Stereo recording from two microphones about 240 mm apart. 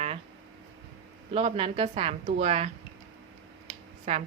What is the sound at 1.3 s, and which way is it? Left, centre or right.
A woman's voice, right.